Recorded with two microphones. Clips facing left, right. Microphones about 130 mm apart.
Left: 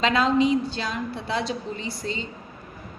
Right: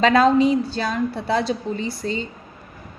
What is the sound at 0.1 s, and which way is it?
A woman's voice, 40° right (ahead or behind).